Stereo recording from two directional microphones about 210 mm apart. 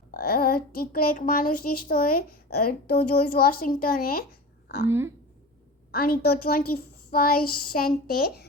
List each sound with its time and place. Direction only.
0.1 s a child's voice: 45° left (ahead or behind)
4.9 s speech: 10° right (ahead or behind)
5.9 s a child's voice: 45° left (ahead or behind)